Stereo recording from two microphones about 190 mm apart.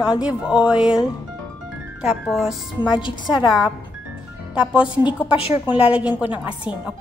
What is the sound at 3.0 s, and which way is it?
Speech, 25° left (ahead or behind).